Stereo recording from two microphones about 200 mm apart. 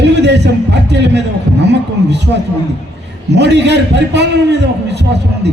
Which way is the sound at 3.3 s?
60° right (ahead or behind).